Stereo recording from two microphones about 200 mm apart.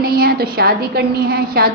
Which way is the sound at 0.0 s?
50° right (ahead or behind).